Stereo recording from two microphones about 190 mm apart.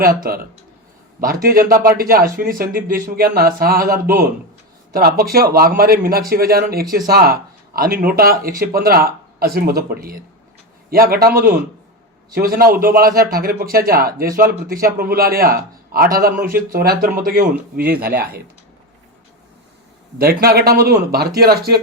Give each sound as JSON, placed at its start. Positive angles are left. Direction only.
{"t": 0.0, "sound": "a man's voice", "side_deg": -50}
{"t": 20.1, "sound": "a man's voice", "side_deg": -50}